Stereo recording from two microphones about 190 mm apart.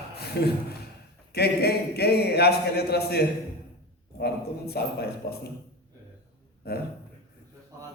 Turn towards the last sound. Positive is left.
turn(degrees=60)  # may be behind; listen again after turning